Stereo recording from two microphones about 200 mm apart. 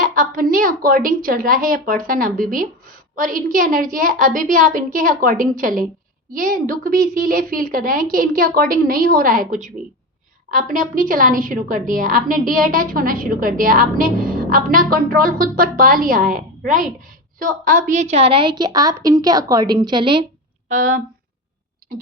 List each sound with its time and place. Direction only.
0.0 s a woman's voice: 45° right (ahead or behind); by 20.2 s 25° right (ahead or behind)
20.7 s speech: 40° right (ahead or behind)